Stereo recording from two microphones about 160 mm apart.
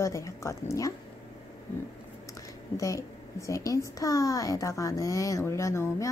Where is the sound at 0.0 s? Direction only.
20° left (ahead or behind).